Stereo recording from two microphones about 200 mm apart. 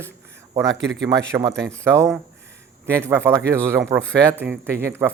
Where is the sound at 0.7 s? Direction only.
65° right (ahead or behind).